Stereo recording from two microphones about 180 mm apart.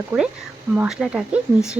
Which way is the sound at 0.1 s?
10° right (ahead or behind).